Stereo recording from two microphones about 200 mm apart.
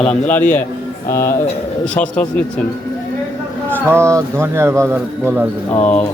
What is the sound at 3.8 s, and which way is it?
Speech, 15° right (ahead or behind).